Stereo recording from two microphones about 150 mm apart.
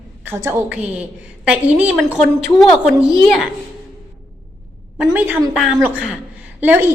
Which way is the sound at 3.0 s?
5° right (ahead or behind).